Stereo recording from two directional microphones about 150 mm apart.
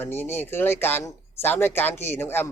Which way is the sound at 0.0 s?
15° left (ahead or behind).